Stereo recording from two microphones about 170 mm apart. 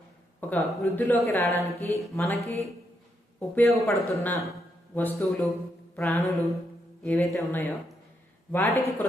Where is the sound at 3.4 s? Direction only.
5° left (ahead or behind).